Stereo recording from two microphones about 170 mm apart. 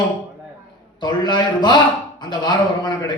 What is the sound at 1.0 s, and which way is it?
Speech, 25° left (ahead or behind).